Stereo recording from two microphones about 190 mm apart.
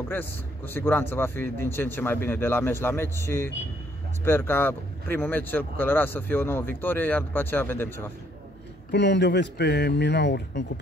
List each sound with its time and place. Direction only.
0.1 s speech: 10° left (ahead or behind)
8.9 s a man's voice: 65° left (ahead or behind)